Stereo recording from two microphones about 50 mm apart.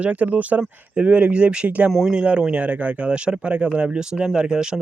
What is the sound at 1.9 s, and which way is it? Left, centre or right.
Speech, centre.